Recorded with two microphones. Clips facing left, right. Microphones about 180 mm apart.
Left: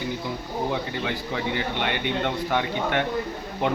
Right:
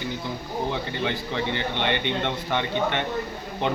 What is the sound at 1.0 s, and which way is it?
Speech, 5° left (ahead or behind).